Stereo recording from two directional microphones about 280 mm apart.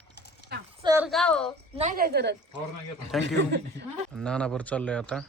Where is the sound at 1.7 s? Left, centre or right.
Right.